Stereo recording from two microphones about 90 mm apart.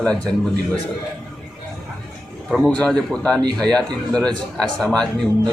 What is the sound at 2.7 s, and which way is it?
A man's voice, 10° left (ahead or behind).